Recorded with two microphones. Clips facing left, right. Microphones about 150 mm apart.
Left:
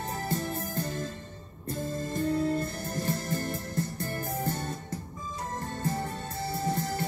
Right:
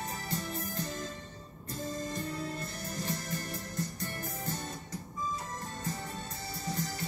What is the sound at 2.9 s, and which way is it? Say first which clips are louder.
Music: left 5 dB; 50° left (ahead or behind).